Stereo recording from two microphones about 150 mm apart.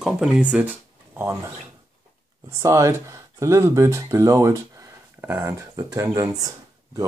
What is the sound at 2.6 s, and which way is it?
Speech, 20° right (ahead or behind).